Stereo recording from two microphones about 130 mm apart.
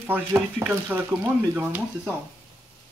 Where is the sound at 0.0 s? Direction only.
15° right (ahead or behind).